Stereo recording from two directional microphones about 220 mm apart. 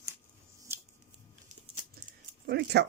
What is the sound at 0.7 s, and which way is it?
Shuffling cards, 10° right (ahead or behind).